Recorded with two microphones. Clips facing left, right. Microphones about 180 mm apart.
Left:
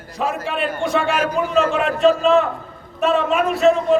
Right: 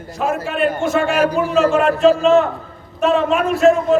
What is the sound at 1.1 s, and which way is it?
Speech, 40° right (ahead or behind).